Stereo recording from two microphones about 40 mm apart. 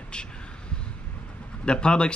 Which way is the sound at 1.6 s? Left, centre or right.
Left.